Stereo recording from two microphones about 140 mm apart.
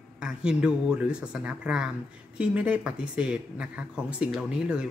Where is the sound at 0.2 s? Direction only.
5° right (ahead or behind).